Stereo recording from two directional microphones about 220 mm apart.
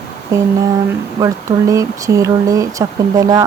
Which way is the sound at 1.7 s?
15° right (ahead or behind).